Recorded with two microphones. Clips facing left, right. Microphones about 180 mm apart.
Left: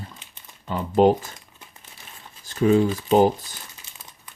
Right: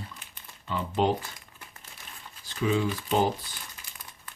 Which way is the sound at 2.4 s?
45° left (ahead or behind).